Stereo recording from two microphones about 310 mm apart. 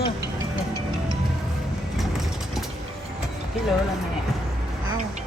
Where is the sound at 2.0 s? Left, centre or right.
Centre.